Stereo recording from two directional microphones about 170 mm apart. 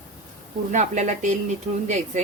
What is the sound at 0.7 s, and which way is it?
Speech, 45° right (ahead or behind).